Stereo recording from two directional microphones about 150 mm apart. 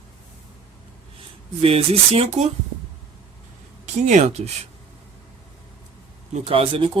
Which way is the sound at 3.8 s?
50° right (ahead or behind).